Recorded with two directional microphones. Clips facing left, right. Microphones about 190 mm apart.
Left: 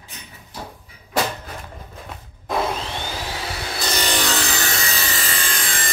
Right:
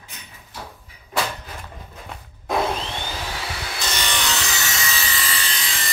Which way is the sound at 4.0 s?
40° left (ahead or behind).